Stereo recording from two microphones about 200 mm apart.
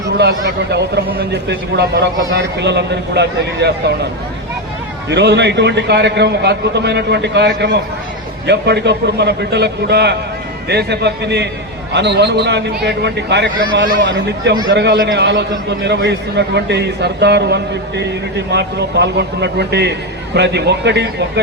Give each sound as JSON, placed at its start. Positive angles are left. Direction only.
{"t": 0.2, "sound": "a man's voice", "side_deg": -55}
{"t": 5.0, "sound": "a man's voice", "side_deg": -60}